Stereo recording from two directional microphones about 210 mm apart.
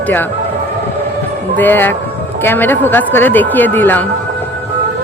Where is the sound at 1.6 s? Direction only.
10° left (ahead or behind).